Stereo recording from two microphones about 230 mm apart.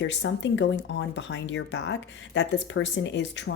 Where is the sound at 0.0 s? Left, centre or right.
Left.